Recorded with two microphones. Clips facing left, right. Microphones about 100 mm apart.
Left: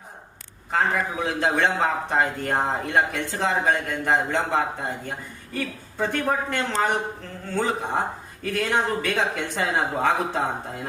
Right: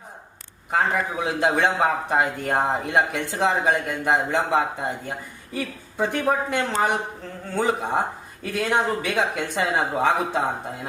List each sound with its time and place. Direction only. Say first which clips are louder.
0.7 s a man's voice: right 1 dB; 10° right (ahead or behind)